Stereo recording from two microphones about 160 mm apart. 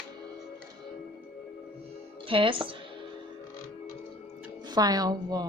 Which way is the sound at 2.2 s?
35° right (ahead or behind).